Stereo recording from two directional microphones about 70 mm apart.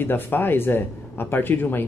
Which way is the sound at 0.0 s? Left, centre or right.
Left.